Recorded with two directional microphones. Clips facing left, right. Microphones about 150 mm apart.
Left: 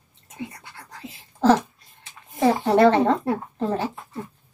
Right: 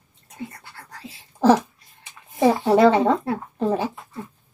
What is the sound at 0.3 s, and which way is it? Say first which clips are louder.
Whispering: even; 20° left (ahead or behind).